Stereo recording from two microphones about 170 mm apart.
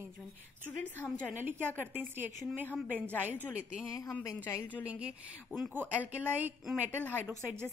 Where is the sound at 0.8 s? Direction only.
10° left (ahead or behind).